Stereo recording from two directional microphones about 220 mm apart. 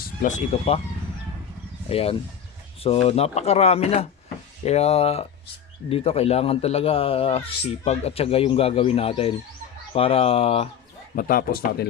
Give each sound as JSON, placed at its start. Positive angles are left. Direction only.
{"t": 0.0, "sound": "speech", "side_deg": 35}
{"t": 1.9, "sound": "speech", "side_deg": 25}
{"t": 11.1, "sound": "speech", "side_deg": 40}